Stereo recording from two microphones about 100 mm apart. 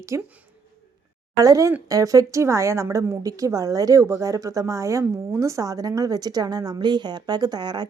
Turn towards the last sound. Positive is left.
turn(degrees=-45)  # may be behind; listen again after turning